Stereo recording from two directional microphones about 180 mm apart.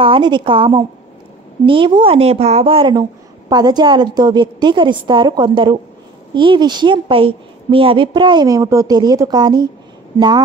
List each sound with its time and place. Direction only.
0.0 s a woman's voice: 25° right (ahead or behind)